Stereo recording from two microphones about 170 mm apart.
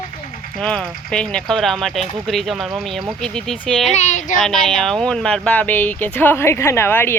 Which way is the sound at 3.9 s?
45° left (ahead or behind).